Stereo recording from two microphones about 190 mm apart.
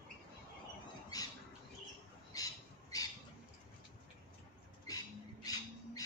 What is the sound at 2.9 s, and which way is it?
Squawk, 20° left (ahead or behind).